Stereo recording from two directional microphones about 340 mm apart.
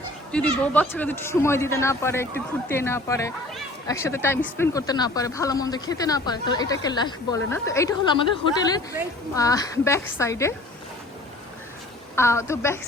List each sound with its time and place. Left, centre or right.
0.3 s speech: centre
12.1 s speech: centre